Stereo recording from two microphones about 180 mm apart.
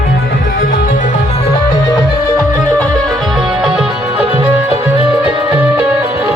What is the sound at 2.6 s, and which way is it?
Music, 5° left (ahead or behind).